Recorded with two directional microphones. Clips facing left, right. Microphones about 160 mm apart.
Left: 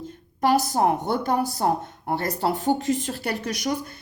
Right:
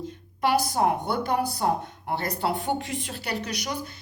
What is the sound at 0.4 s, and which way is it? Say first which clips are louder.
A woman's voice: left 3 dB; 45° left (ahead or behind).